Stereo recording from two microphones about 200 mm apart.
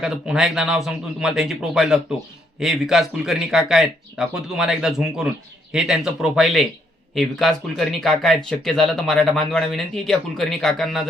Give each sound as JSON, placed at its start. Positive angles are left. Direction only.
{"t": 0.0, "sound": "speech", "side_deg": -5}